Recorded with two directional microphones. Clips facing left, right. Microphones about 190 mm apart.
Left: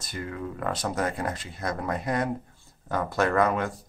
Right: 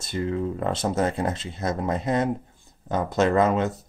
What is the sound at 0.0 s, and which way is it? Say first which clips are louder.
Speech: right 8 dB; 25° right (ahead or behind).